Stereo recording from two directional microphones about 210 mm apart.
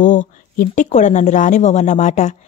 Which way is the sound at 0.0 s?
40° left (ahead or behind).